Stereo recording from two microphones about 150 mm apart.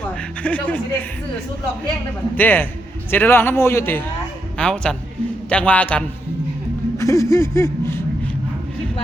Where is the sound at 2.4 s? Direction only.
15° left (ahead or behind).